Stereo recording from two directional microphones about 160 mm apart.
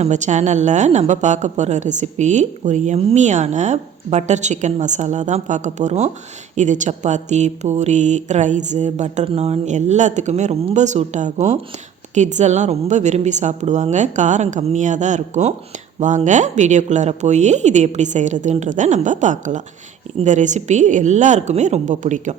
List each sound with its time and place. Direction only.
0.0 s a woman's voice: 45° right (ahead or behind)